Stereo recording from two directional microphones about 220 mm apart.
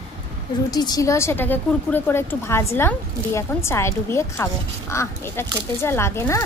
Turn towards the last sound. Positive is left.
turn(degrees=10)  # may be behind; listen again after turning